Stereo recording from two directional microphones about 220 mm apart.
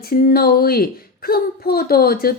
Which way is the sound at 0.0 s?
40° left (ahead or behind).